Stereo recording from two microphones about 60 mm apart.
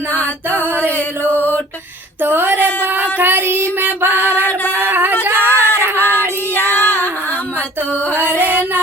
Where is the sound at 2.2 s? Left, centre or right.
Right.